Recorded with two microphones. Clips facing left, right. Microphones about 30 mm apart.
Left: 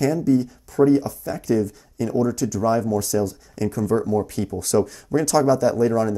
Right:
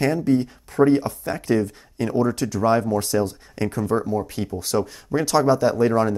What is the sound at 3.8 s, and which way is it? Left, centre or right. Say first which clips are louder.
Speech: left 3 dB; right.